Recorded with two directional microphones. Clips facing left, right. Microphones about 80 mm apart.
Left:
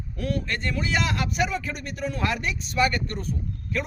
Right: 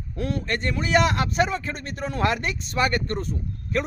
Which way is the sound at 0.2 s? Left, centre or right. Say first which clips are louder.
Right 2 dB; right.